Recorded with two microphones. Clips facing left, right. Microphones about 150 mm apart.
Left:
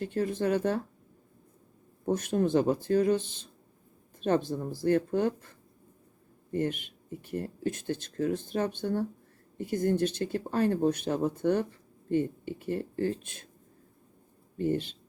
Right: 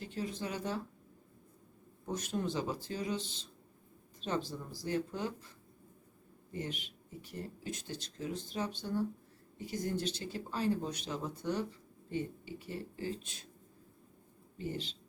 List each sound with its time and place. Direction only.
0.0 s speech: 55° left (ahead or behind)
2.0 s speech: 55° left (ahead or behind)
14.6 s speech: 55° left (ahead or behind)